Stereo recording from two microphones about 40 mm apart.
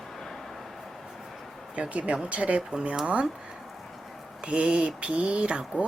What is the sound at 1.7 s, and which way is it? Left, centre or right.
Speech, right.